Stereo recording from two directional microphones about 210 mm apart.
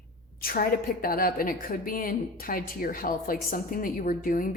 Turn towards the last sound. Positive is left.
turn(degrees=40)  # may be behind; listen again after turning